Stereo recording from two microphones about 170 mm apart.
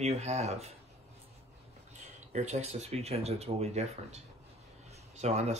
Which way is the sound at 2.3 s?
40° right (ahead or behind).